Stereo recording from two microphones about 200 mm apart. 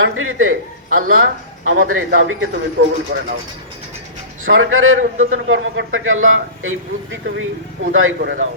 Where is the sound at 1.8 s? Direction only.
90° right.